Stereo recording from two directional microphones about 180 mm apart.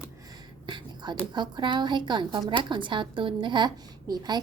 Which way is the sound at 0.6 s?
25° right (ahead or behind).